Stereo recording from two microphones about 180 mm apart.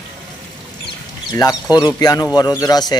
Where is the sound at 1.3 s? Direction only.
20° left (ahead or behind).